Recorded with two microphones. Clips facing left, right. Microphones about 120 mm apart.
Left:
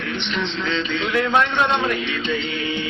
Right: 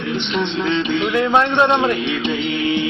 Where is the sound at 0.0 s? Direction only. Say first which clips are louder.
Right 5 dB; 25° right (ahead or behind).